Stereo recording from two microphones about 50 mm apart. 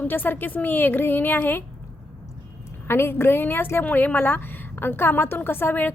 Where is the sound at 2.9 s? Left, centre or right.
Left.